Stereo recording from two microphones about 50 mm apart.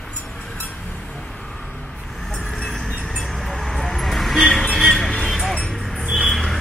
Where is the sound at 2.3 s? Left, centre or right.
Centre.